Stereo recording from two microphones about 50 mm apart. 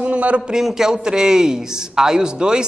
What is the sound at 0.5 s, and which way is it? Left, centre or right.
A man's voice, centre.